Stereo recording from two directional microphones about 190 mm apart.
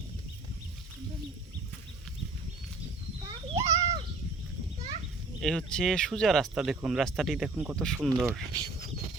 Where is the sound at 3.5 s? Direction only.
15° right (ahead or behind).